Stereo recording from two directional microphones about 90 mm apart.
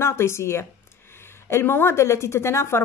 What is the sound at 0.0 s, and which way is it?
A woman's voice, 30° left (ahead or behind).